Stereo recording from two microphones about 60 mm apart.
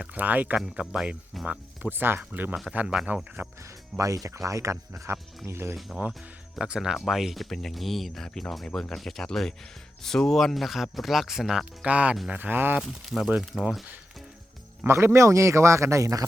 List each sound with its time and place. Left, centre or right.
0.1 s speech: right
1.3 s speech: centre
1.9 s speech: right
2.8 s speech: centre
3.4 s speech: right
3.9 s a man's voice: right
5.5 s speech: right
6.6 s speech: centre
11.9 s speech: right
12.8 s speech: centre
14.8 s a man's voice: right